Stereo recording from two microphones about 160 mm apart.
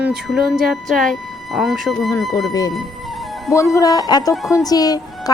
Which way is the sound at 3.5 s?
20° left (ahead or behind).